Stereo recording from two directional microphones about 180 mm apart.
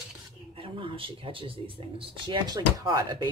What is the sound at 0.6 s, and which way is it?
Speech, 30° right (ahead or behind).